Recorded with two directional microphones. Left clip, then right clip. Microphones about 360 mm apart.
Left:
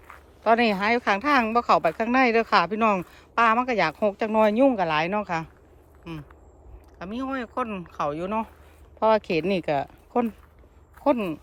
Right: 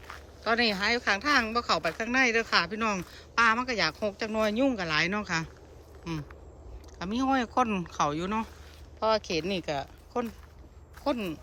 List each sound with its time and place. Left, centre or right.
0.4 s a woman's voice: centre
9.0 s a woman's voice: centre